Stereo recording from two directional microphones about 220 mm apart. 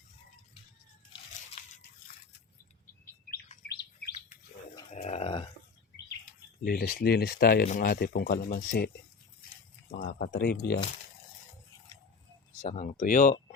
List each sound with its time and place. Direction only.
1.3 s biting: 30° left (ahead or behind)
3.7 s bird: 50° left (ahead or behind)
4.9 s a sound: 30° left (ahead or behind)
6.6 s speech: 40° left (ahead or behind)
9.9 s speech: 45° left (ahead or behind)
12.6 s speech: 30° left (ahead or behind)